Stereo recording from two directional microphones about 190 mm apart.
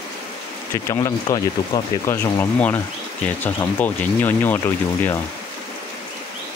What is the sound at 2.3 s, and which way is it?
Speech, 10° left (ahead or behind).